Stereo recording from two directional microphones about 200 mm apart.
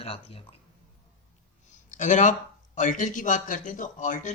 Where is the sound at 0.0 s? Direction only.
30° left (ahead or behind).